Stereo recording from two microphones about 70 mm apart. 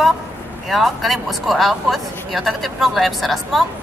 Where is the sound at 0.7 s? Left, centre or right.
Centre.